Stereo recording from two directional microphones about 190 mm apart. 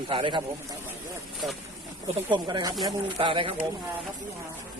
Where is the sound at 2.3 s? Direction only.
20° right (ahead or behind).